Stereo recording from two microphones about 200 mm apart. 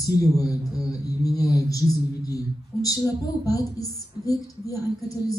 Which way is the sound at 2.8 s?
15° left (ahead or behind).